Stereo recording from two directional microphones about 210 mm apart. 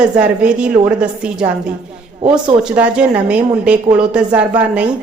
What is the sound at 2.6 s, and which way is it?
Speech, 5° right (ahead or behind).